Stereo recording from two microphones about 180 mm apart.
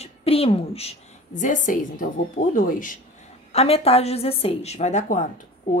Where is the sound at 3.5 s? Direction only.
35° left (ahead or behind).